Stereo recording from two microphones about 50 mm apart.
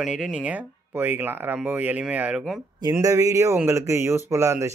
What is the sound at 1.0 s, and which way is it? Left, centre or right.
Speech, right.